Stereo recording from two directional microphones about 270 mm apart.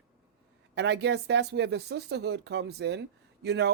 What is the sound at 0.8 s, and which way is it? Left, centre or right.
Speech, right.